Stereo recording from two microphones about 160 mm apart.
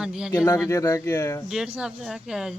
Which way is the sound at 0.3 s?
15° left (ahead or behind).